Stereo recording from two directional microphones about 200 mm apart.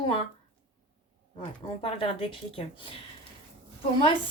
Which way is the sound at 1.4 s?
30° left (ahead or behind).